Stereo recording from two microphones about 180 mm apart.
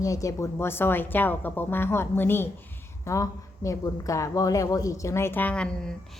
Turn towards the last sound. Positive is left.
turn(degrees=5)  # may be behind; listen again after turning